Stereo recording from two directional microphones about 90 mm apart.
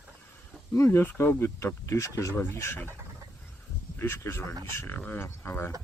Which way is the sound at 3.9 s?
25° left (ahead or behind).